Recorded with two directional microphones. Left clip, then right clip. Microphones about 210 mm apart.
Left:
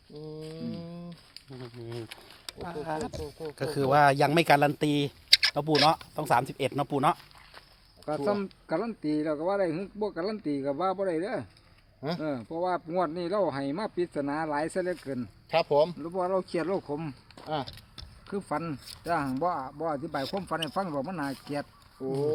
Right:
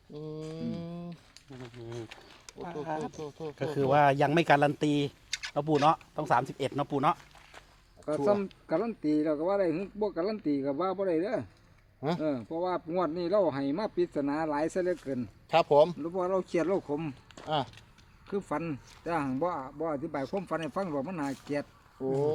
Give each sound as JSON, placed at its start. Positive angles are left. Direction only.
{"t": 0.2, "sound": "mantra", "side_deg": -25}
{"t": 1.9, "sound": "speech", "side_deg": 35}
{"t": 2.5, "sound": "speech", "side_deg": 20}
{"t": 3.2, "sound": "speech", "side_deg": -25}
{"t": 3.6, "sound": "speech", "side_deg": 20}
{"t": 8.0, "sound": "speech", "side_deg": 10}
{"t": 15.4, "sound": "speech", "side_deg": -35}
{"t": 16.0, "sound": "speech", "side_deg": 10}
{"t": 17.4, "sound": "speech", "side_deg": -30}
{"t": 18.3, "sound": "speech", "side_deg": 10}
{"t": 22.0, "sound": "speech", "side_deg": -25}